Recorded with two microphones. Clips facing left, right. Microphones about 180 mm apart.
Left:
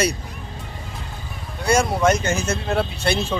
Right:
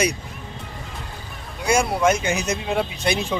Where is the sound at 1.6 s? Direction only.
10° right (ahead or behind).